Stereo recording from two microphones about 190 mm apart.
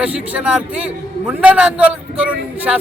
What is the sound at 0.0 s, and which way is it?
A man's voice, 5° right (ahead or behind).